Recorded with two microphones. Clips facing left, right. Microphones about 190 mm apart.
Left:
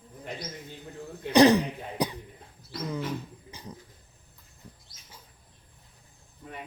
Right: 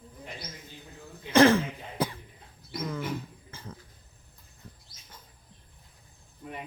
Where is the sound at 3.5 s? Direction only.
15° left (ahead or behind).